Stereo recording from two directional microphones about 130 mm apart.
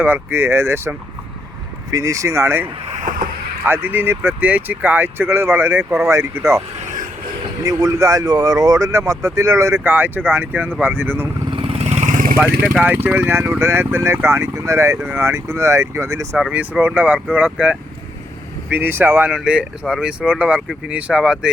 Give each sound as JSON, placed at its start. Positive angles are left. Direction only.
{"t": 0.0, "sound": "speech", "side_deg": -15}
{"t": 7.6, "sound": "speech", "side_deg": -25}
{"t": 11.5, "sound": "vehicle", "side_deg": -50}
{"t": 12.4, "sound": "speech", "side_deg": -10}
{"t": 16.5, "sound": "speech", "side_deg": -10}